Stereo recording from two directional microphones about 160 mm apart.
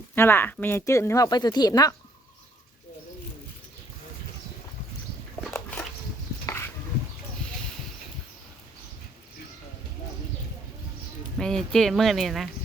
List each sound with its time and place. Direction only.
0.2 s speech: 15° left (ahead or behind)
6.4 s a sound: 15° left (ahead or behind)
11.3 s speech: 5° left (ahead or behind)